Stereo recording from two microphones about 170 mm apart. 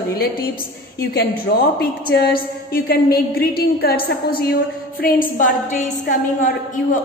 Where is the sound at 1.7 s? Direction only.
70° left (ahead or behind).